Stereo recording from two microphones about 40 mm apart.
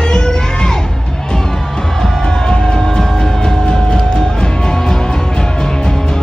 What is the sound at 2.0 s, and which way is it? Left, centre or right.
Music, centre.